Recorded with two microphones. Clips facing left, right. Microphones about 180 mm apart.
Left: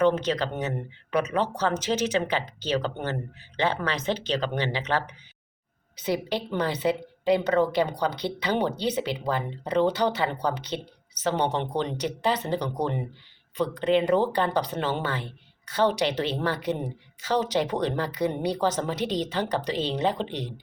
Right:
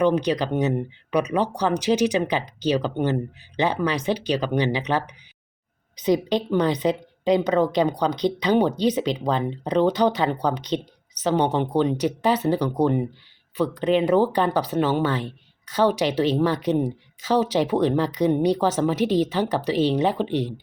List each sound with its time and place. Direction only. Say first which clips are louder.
0.0 s a woman's voice: right 2 dB; 15° right (ahead or behind)